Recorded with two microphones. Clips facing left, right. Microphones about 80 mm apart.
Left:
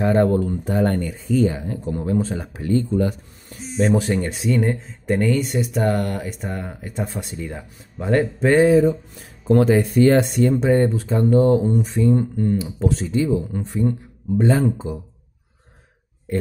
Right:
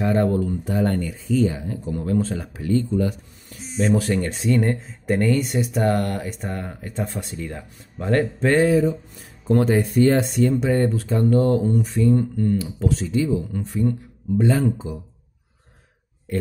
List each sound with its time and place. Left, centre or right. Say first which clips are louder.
0.0 s speech: left 3 dB; left
2.0 s speech: even; centre
2.6 s speech: left 1 dB; left
3.9 s speech: right 2 dB; left
4.3 s speech: even; centre
9.7 s speech: left 1 dB; left
10.6 s speech: left 3 dB; left
12.8 s speech: left 2 dB; left